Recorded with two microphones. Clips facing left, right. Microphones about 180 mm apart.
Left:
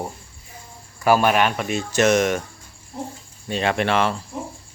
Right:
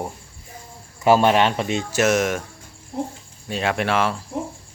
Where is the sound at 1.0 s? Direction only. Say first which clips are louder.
Right 2 dB; 25° right (ahead or behind).